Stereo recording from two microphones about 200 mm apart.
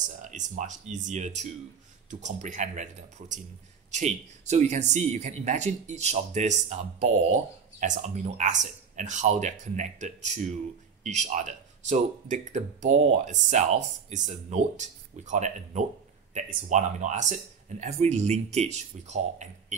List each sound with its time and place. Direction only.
0.2 s speech: 40° right (ahead or behind)